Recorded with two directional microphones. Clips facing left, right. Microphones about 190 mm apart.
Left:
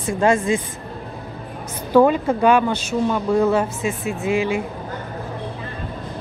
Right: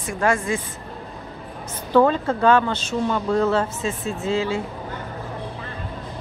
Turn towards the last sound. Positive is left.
turn(degrees=15)  # may be behind; listen again after turning